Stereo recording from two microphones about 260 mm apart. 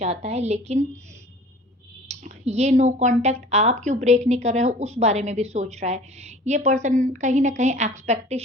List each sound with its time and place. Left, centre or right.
0.0 s speech: right
2.0 s speech: right